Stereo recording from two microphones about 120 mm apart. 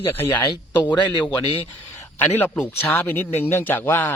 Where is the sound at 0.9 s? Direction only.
40° left (ahead or behind).